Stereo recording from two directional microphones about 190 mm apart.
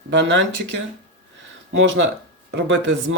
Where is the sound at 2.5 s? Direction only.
75° right (ahead or behind).